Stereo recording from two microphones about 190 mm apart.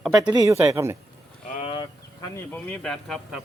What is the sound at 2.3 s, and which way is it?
Speech, 10° left (ahead or behind).